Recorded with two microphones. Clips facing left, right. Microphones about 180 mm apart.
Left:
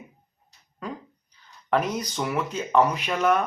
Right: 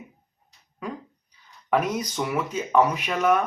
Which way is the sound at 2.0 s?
5° right (ahead or behind).